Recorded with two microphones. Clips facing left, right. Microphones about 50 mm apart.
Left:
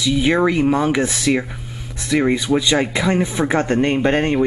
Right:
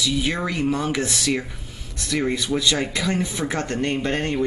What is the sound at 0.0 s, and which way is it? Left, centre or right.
Speech, left.